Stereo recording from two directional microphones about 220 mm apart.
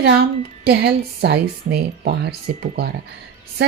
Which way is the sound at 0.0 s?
45° right (ahead or behind).